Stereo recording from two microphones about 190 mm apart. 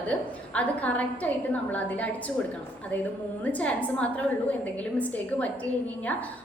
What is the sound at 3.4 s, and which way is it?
A woman's voice, 5° left (ahead or behind).